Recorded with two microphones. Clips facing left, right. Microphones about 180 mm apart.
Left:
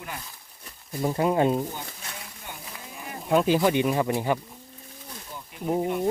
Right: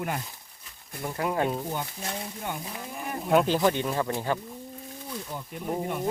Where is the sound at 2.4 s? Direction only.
55° right (ahead or behind).